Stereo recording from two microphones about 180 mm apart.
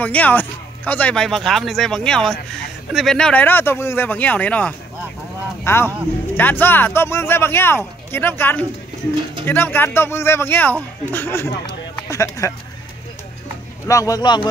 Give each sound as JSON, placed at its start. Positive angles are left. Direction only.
{"t": 0.0, "sound": "speech", "side_deg": 10}
{"t": 13.8, "sound": "speech", "side_deg": 20}